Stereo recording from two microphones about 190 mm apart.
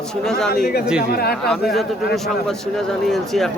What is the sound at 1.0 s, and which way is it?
Speech, 55° left (ahead or behind).